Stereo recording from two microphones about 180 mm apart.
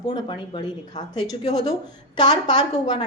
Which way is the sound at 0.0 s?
25° left (ahead or behind).